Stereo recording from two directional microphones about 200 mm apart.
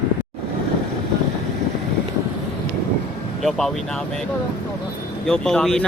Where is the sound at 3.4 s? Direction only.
Centre (ahead or behind).